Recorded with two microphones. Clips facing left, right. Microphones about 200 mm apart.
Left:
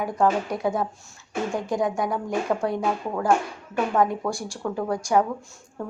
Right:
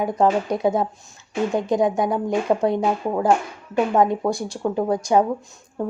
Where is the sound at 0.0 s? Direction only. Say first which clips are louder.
Right 3 dB; 20° right (ahead or behind).